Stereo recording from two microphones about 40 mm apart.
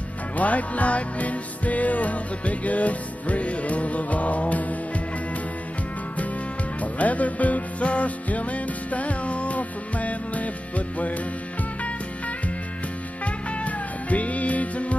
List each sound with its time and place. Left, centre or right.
0.4 s music: left
6.8 s music: left
13.2 s music: left